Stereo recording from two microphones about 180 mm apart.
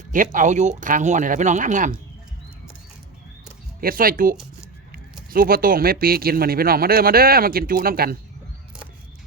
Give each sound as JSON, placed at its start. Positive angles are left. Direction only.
{"t": 0.1, "sound": "speech", "side_deg": -45}
{"t": 3.8, "sound": "speech", "side_deg": -55}